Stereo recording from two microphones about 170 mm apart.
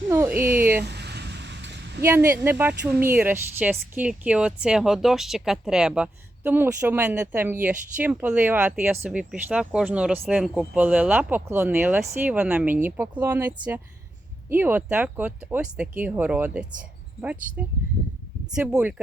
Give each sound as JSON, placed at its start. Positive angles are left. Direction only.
{"t": 0.1, "sound": "speech", "side_deg": -15}
{"t": 0.4, "sound": "speech", "side_deg": -60}
{"t": 0.8, "sound": "a sound", "side_deg": -80}
{"t": 2.0, "sound": "speech", "side_deg": -10}
{"t": 18.5, "sound": "speech", "side_deg": -5}